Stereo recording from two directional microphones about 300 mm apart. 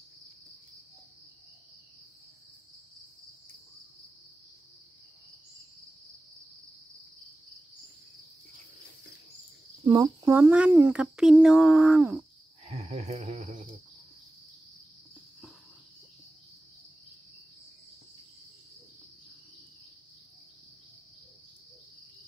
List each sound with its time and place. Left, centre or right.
9.8 s speech: centre
12.6 s cricket: right